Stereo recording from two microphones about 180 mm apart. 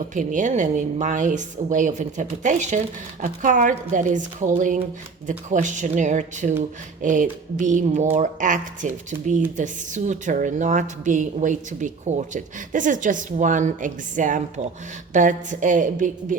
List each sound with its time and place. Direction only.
0.1 s speech: 45° right (ahead or behind)